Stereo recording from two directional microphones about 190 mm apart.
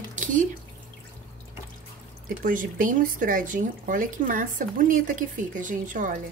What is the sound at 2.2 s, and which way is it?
Speech, 45° right (ahead or behind).